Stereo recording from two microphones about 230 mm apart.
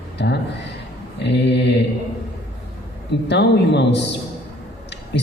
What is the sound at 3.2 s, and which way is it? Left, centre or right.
Speech, left.